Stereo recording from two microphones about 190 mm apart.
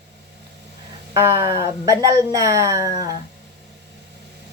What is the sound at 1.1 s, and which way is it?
Speech, 15° right (ahead or behind).